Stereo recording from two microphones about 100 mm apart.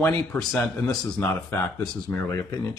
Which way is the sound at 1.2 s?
20° left (ahead or behind).